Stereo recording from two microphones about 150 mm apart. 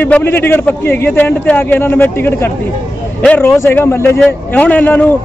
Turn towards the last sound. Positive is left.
turn(degrees=10)  # may be behind; listen again after turning